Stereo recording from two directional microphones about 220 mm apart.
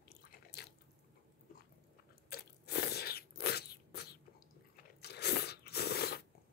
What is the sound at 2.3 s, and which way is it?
Crunch, 45° left (ahead or behind).